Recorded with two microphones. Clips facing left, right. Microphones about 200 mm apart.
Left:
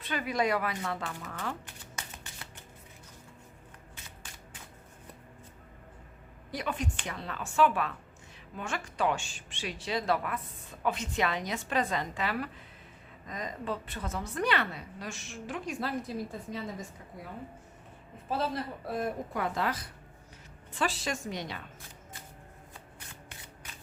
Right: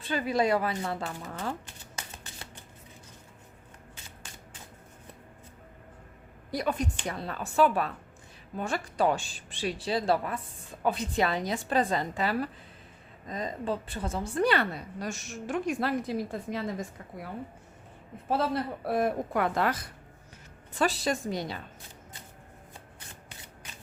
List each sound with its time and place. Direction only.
0.0 s a woman's voice: 30° right (ahead or behind)
6.5 s a woman's voice: 35° right (ahead or behind)
15.8 s a woman's voice: 70° right (ahead or behind)
18.3 s a woman's voice: 65° right (ahead or behind)
20.7 s a woman's voice: 40° right (ahead or behind)